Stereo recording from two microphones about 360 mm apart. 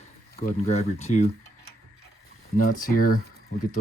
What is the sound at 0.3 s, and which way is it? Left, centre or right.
Speech, centre.